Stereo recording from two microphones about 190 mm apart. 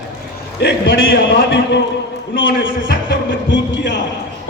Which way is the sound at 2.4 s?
80° left.